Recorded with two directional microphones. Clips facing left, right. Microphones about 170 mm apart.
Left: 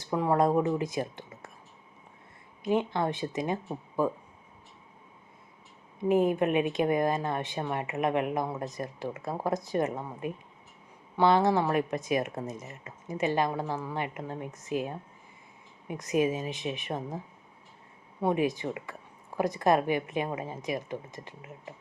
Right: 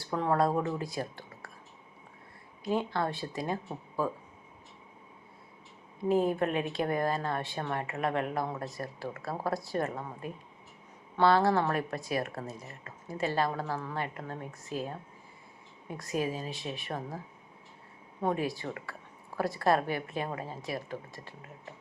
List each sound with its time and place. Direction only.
0.0 s speech: 15° left (ahead or behind)
2.6 s speech: 20° left (ahead or behind)
6.0 s speech: 15° left (ahead or behind)
18.2 s speech: 15° left (ahead or behind)